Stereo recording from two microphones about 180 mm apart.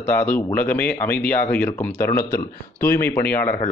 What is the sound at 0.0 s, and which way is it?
Speech, 10° left (ahead or behind).